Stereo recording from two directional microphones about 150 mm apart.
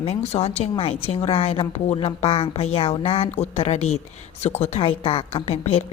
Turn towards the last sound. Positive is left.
turn(degrees=45)  # may be behind; listen again after turning